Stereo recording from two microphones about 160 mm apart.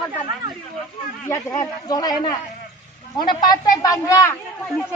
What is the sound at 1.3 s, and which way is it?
A woman's voice, 25° left (ahead or behind).